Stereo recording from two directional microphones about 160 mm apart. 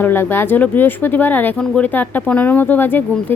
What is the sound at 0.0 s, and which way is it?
Speech, 15° left (ahead or behind).